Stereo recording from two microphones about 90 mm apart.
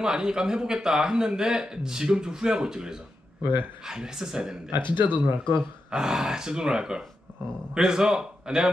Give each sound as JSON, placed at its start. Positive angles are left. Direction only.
{"t": 0.0, "sound": "a man's voice", "side_deg": -10}
{"t": 5.0, "sound": "speech", "side_deg": 60}
{"t": 5.6, "sound": "a man's voice", "side_deg": -5}